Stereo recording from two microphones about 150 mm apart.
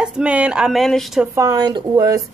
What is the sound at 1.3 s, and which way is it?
Speech, 25° right (ahead or behind).